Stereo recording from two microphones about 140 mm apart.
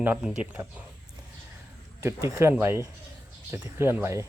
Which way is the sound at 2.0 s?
25° right (ahead or behind).